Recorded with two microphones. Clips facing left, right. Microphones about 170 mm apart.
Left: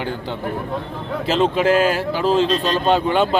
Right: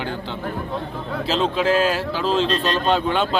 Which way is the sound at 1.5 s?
50° left (ahead or behind).